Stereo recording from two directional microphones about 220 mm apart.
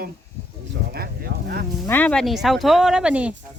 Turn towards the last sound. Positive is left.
turn(degrees=-5)  # may be behind; listen again after turning